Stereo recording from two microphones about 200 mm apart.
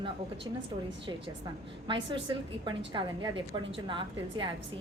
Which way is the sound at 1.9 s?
25° right (ahead or behind).